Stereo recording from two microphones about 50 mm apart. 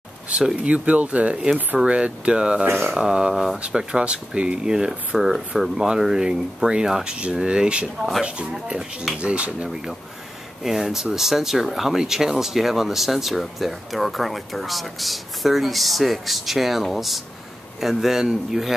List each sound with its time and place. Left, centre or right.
0.6 s speech: right
1.3 s speech: centre
2.6 s speech: right
3.0 s speech: centre
9.7 s speech: centre